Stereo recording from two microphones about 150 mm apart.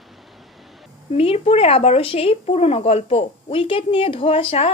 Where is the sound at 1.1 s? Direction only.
40° left (ahead or behind).